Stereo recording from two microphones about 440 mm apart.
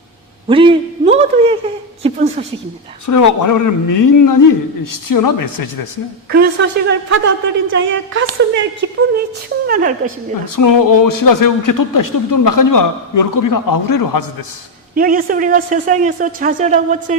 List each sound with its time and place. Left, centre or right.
0.4 s a sound: centre
3.1 s speech: left
6.3 s a woman's voice: right
10.5 s speech: left
14.9 s speech: centre